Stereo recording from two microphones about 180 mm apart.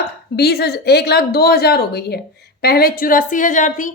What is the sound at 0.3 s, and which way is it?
Speech, 65° left (ahead or behind).